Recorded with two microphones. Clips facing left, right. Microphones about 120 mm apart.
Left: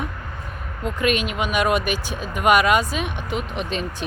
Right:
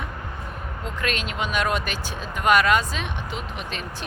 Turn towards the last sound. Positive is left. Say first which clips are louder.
# left 6 dB
turn(degrees=20)  # may be behind; listen again after turning